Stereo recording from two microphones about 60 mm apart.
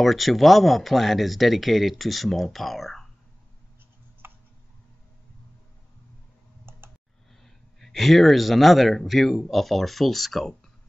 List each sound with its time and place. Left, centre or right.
0.0 s speech: centre
4.2 s tick: right
6.7 s clicking: right
7.4 s speech: centre